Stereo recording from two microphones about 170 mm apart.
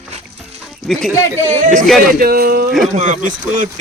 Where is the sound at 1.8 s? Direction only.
Centre (ahead or behind).